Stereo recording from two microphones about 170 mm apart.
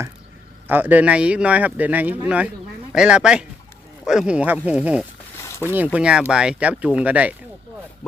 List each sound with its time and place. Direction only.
0.7 s speech: 10° right (ahead or behind)
5.4 s a sound: 15° left (ahead or behind)
5.7 s speech: 10° right (ahead or behind)